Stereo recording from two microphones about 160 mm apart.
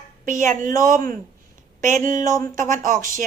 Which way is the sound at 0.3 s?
55° right (ahead or behind).